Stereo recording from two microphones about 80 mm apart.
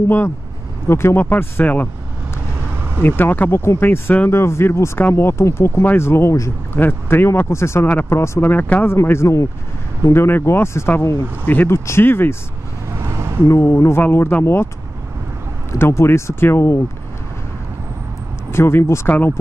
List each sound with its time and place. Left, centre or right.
0.8 s speech: left
3.0 s speech: left
4.3 s speech: left
6.8 s speech: left
8.8 s speech: left
11.4 s speech: left
11.7 s speech: left
12.9 s a sound: right
13.5 s speech: left
15.8 s speech: left
18.5 s speech: left